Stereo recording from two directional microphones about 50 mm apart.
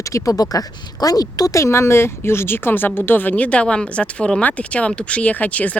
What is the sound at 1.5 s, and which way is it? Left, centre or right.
Speech, left.